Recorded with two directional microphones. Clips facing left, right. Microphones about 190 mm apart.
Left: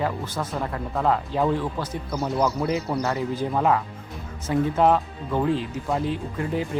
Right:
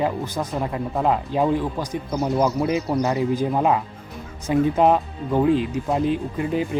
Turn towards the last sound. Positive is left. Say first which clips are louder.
# right 4 dB
turn(degrees=-15)  # may be behind; listen again after turning